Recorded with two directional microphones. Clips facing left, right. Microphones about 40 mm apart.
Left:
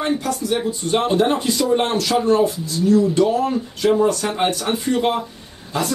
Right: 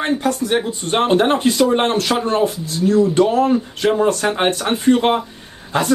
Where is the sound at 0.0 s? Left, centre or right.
Right.